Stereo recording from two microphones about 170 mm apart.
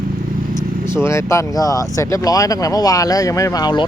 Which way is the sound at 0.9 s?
15° left (ahead or behind).